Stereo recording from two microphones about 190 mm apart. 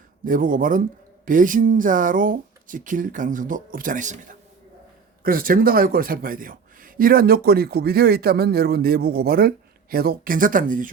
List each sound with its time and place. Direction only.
0.3 s a man's voice: 45° right (ahead or behind)